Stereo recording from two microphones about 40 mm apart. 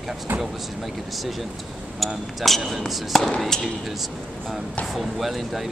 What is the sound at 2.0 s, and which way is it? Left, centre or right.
Speech, centre.